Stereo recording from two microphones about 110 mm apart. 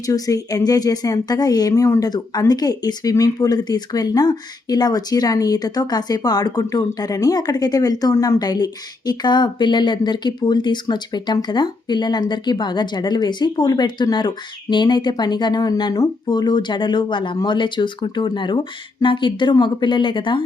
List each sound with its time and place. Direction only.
0.0 s a woman's voice: 30° left (ahead or behind)